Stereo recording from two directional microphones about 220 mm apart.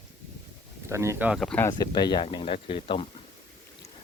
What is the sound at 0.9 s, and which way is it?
Speech, 10° right (ahead or behind).